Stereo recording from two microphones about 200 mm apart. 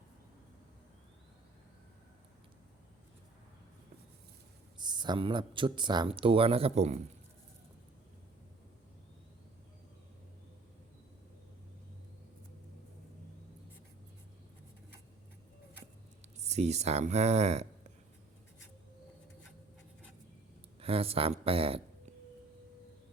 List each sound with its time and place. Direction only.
4.8 s speech: 20° right (ahead or behind)
16.2 s speech: 35° right (ahead or behind)
20.8 s speech: 30° right (ahead or behind)